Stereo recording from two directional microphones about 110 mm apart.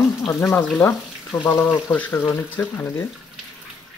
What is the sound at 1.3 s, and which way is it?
Speech, 25° left (ahead or behind).